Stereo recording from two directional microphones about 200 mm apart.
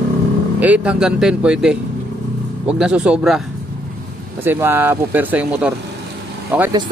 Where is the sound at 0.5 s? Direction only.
5° right (ahead or behind).